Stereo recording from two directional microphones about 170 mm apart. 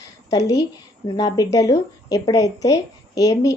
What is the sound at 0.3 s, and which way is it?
Speech, 20° left (ahead or behind).